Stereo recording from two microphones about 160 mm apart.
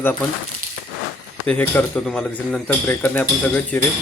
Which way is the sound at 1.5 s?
10° left (ahead or behind).